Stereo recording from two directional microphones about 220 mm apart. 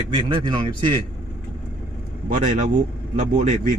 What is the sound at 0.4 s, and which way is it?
Speech, 20° right (ahead or behind).